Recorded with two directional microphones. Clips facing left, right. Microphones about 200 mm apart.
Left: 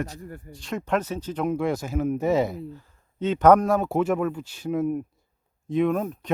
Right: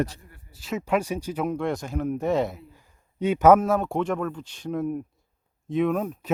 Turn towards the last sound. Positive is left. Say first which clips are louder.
# left 1 dB
turn(degrees=0)  # may be behind; listen again after turning